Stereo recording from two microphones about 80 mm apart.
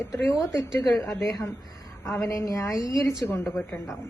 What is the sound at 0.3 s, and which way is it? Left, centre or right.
A woman's voice, left.